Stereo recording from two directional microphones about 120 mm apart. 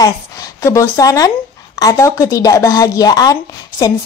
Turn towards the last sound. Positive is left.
turn(degrees=30)  # may be behind; listen again after turning